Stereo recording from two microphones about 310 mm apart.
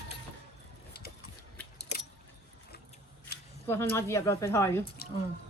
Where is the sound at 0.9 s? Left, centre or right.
Left.